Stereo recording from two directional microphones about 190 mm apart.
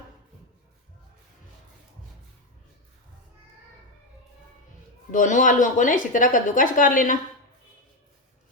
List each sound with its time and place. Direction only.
5.1 s speech: 40° left (ahead or behind)